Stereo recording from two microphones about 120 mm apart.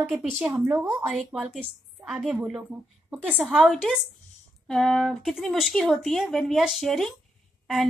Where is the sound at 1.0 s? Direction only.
Centre (ahead or behind).